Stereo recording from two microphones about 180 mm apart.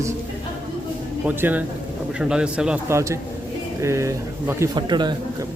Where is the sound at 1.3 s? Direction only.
10° right (ahead or behind).